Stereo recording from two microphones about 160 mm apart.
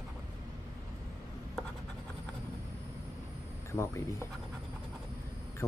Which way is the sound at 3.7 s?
15° left (ahead or behind).